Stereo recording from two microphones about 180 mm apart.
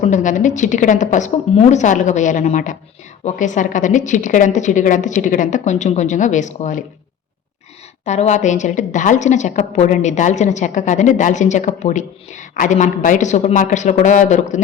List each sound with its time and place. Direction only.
0.0 s a woman's voice: 45° left (ahead or behind)
8.0 s a woman's voice: 40° left (ahead or behind)